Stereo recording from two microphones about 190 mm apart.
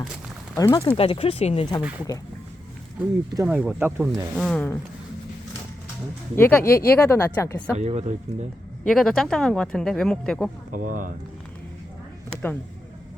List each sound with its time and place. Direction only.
0.5 s speech: 20° left (ahead or behind)
0.9 s speech: 30° left (ahead or behind)
3.0 s speech: 10° right (ahead or behind)
4.4 s speech: 5° left (ahead or behind)
6.3 s speech: 10° left (ahead or behind)
7.8 s speech: 35° right (ahead or behind)
8.9 s speech: 5° left (ahead or behind)
10.7 s speech: 45° right (ahead or behind)